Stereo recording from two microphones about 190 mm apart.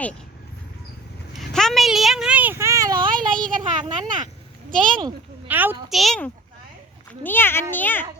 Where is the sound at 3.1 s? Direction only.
45° right (ahead or behind).